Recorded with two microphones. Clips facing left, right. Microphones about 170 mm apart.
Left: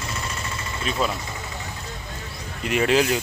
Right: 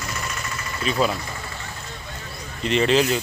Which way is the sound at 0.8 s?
Centre (ahead or behind).